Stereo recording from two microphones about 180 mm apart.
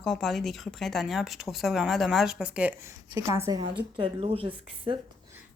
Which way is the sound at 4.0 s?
30° right (ahead or behind).